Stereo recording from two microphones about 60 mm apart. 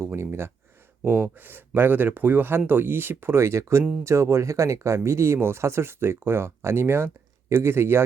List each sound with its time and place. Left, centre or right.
0.2 s speech: right